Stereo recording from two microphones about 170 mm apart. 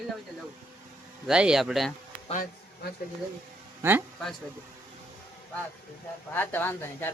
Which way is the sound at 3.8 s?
15° right (ahead or behind).